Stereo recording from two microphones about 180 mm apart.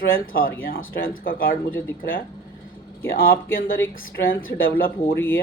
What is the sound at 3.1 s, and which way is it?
Speech, 55° left (ahead or behind).